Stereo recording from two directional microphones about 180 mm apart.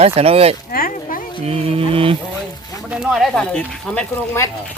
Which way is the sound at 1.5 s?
30° right (ahead or behind).